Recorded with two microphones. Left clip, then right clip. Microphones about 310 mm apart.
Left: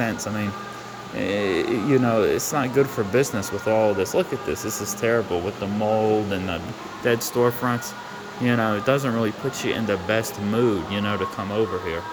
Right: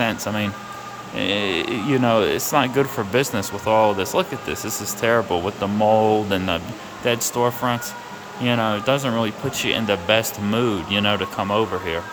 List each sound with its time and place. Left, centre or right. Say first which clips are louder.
0.0 s speech: right 4 dB; centre
1.4 s speech: even; right
1.9 s speech: right 2 dB; centre